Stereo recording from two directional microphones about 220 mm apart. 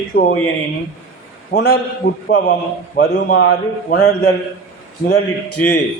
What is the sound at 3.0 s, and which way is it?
Speech, 45° left (ahead or behind).